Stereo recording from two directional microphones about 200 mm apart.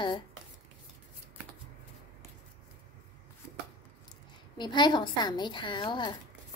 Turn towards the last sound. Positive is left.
turn(degrees=20)  # may be behind; listen again after turning